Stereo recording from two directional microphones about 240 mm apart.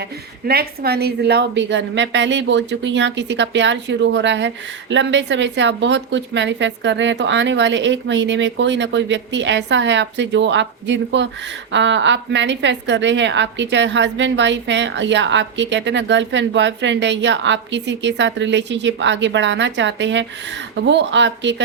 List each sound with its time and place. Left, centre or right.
0.4 s a woman's voice: right